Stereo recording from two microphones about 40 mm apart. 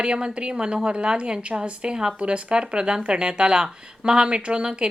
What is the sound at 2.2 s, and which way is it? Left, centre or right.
Speech, right.